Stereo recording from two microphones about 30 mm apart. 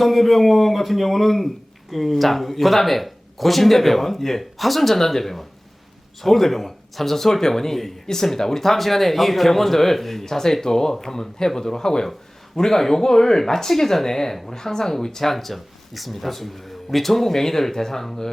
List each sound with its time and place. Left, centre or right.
0.0 s speech: centre
8.0 s speech: centre